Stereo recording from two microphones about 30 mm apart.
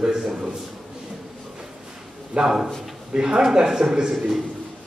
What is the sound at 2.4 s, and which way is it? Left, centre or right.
A man's voice, centre.